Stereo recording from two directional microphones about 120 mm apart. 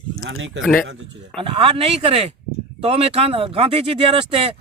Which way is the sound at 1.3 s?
45° right (ahead or behind).